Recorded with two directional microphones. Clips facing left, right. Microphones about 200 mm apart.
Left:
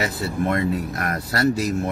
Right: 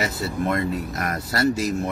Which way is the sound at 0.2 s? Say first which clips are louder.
Left 2 dB; centre (ahead or behind).